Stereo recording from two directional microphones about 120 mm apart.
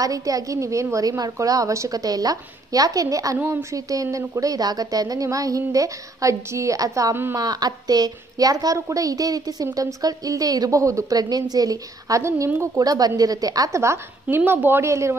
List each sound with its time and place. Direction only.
0.0 s speech: 30° right (ahead or behind)
3.3 s a woman's voice: 15° right (ahead or behind)
3.7 s a woman's voice: 30° right (ahead or behind)